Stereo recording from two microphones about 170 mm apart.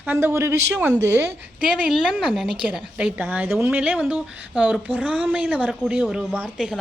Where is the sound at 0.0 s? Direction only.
10° right (ahead or behind).